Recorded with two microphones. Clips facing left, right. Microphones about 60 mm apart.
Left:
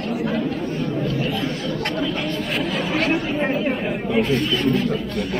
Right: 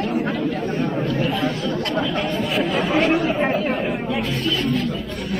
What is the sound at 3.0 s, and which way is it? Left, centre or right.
Speech, centre.